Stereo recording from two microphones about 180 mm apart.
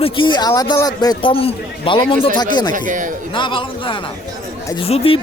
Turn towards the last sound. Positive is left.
turn(degrees=30)  # may be behind; listen again after turning